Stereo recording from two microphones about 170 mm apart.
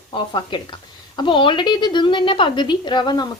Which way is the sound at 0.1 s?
30° left (ahead or behind).